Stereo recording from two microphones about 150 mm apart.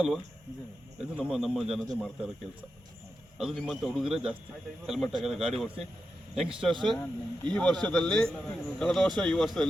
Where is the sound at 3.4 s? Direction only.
5° right (ahead or behind).